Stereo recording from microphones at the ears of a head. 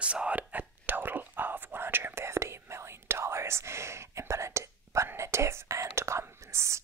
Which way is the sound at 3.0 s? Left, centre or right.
Right.